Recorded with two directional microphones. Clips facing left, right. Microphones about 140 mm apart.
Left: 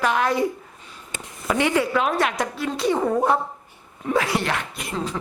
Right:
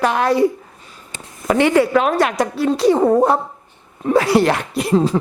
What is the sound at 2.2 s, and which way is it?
Speech, 40° right (ahead or behind).